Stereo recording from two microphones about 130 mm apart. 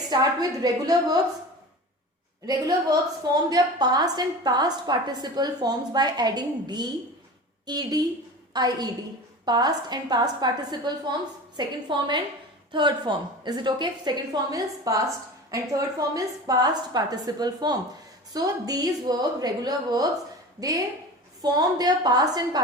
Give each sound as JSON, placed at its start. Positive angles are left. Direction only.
{"t": 0.1, "sound": "a woman's voice", "side_deg": -30}
{"t": 2.5, "sound": "a woman's voice", "side_deg": -30}